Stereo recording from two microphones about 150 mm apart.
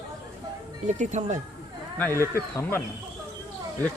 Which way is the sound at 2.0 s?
15° left (ahead or behind).